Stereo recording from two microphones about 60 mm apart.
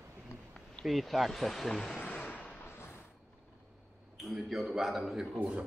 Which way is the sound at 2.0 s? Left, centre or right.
Left.